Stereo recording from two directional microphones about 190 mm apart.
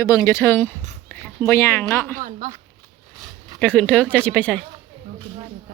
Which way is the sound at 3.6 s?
5° left (ahead or behind).